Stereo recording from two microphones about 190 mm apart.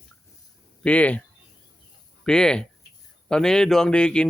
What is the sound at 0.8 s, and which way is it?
Speech, 5° left (ahead or behind).